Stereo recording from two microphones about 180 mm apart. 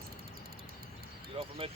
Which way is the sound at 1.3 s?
30° right (ahead or behind).